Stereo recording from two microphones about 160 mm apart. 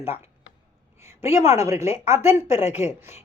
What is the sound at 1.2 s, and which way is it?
A woman's voice, 15° right (ahead or behind).